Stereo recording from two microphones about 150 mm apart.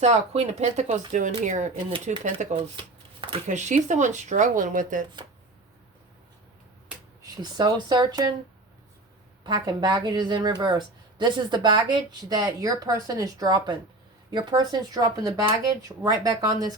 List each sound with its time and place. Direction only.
0.0 s speech: 45° right (ahead or behind)
2.7 s shuffling cards: 35° right (ahead or behind)
3.4 s speech: 55° right (ahead or behind)
7.2 s speech: 30° right (ahead or behind)
9.4 s speech: 30° right (ahead or behind)